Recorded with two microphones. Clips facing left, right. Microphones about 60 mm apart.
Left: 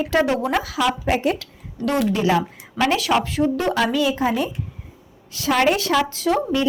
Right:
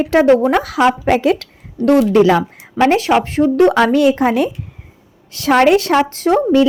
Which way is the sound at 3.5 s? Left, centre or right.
Right.